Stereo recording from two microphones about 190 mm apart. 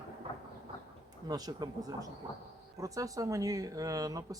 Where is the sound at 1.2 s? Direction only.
20° right (ahead or behind).